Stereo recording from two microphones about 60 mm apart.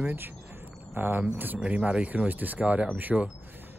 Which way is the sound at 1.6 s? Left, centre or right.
Centre.